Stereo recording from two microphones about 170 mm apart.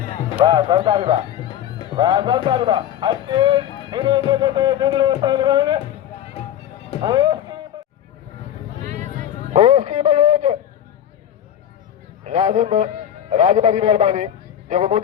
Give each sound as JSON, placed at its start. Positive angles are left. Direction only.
{"t": 0.4, "sound": "speech", "side_deg": -25}
{"t": 7.0, "sound": "speech", "side_deg": -25}
{"t": 9.1, "sound": "a sound", "side_deg": -45}
{"t": 12.2, "sound": "a man's voice", "side_deg": -40}